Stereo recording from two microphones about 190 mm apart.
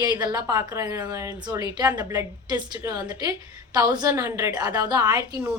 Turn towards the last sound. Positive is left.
turn(degrees=-15)  # may be behind; listen again after turning